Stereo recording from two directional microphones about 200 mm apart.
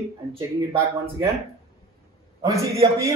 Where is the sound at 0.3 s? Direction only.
20° right (ahead or behind).